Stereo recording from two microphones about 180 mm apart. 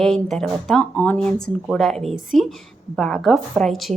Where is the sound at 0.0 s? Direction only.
5° left (ahead or behind).